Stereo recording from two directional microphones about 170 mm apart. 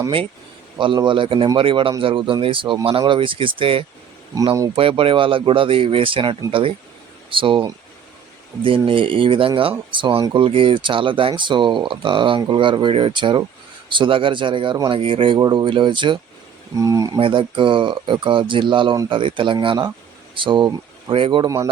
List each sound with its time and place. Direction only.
0.8 s speech: 30° right (ahead or behind)
4.4 s speech: 20° right (ahead or behind)
4.8 s speech: 30° right (ahead or behind)
17.2 s speech: 30° right (ahead or behind)